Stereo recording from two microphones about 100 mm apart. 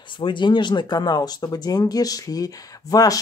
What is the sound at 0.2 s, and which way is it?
Speech, 50° left (ahead or behind).